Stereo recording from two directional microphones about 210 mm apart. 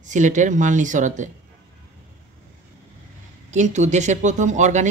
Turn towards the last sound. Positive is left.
turn(degrees=-35)  # may be behind; listen again after turning